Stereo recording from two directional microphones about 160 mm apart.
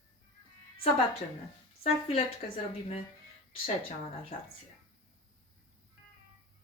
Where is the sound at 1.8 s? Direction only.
40° left (ahead or behind).